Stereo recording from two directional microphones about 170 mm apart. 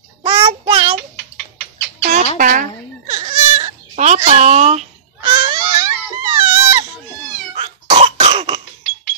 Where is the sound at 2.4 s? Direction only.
50° right (ahead or behind).